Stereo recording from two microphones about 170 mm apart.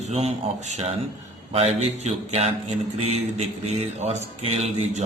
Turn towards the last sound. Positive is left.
turn(degrees=-40)  # may be behind; listen again after turning